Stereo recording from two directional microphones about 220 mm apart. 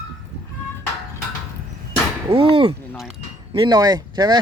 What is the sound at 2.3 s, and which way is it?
Speech, 20° right (ahead or behind).